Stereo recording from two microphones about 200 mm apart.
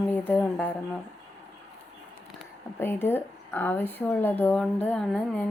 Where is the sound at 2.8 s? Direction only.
10° left (ahead or behind).